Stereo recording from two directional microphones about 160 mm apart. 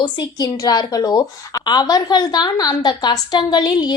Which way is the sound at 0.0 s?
25° left (ahead or behind).